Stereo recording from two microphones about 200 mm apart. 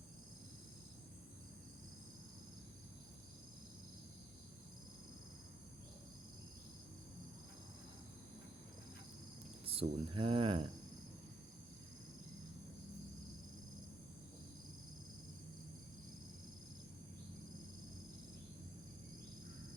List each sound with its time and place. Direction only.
9.6 s speech: 30° right (ahead or behind)